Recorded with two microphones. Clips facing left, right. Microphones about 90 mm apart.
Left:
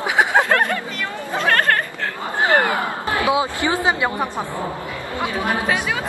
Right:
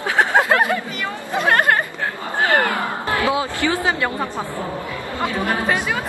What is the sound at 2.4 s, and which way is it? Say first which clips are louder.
Speech: left 1 dB; 15° left (ahead or behind).